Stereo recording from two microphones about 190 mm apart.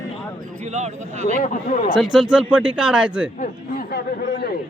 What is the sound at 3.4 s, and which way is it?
Speech, 50° left (ahead or behind).